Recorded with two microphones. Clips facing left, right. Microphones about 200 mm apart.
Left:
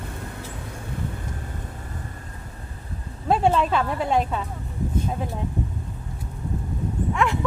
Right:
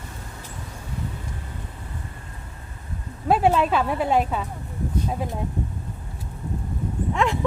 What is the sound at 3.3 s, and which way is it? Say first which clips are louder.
Speech: right 1 dB; 10° right (ahead or behind).